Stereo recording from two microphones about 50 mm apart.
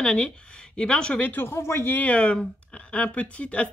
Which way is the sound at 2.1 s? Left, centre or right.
Left.